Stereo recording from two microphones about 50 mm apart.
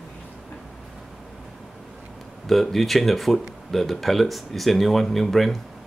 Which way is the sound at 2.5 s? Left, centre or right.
Centre.